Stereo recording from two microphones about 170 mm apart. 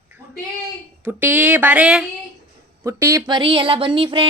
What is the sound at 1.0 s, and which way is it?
Speech, 10° right (ahead or behind).